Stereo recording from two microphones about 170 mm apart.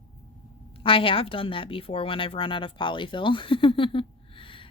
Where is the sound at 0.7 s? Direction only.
30° left (ahead or behind).